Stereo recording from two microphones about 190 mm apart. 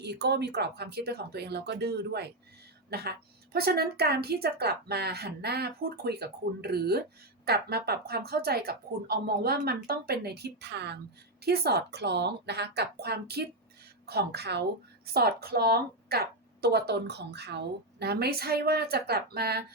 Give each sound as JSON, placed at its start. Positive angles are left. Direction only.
{"t": 0.0, "sound": "a woman's voice", "side_deg": -60}